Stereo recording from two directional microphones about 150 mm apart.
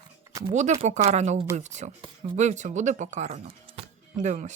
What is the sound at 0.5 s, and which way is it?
Speech, 50° right (ahead or behind).